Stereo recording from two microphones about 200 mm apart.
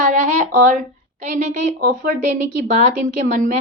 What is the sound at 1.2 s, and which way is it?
A woman's voice, 35° right (ahead or behind).